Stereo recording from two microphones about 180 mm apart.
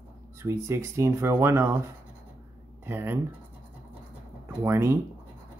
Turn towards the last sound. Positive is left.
turn(degrees=-15)  # may be behind; listen again after turning